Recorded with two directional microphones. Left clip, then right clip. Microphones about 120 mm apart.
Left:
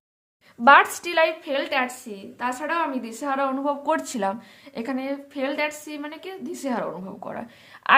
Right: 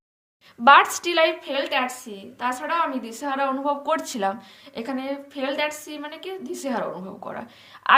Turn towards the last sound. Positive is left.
turn(degrees=50)  # may be behind; listen again after turning